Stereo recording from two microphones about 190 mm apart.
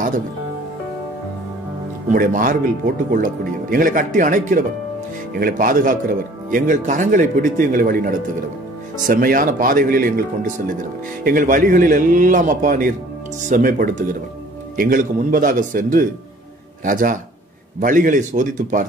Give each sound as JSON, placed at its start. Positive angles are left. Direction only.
{"t": 2.0, "sound": "speech", "side_deg": -45}